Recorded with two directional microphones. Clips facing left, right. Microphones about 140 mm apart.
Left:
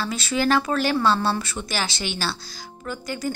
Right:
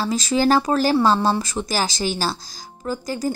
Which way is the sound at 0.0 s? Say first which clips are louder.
Right 4 dB; 40° right (ahead or behind).